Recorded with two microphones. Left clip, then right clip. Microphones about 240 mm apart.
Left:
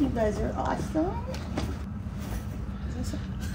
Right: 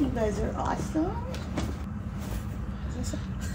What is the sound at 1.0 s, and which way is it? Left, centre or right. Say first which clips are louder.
Speech: left 1 dB; centre.